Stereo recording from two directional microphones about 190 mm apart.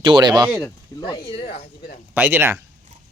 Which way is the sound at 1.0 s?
25° left (ahead or behind).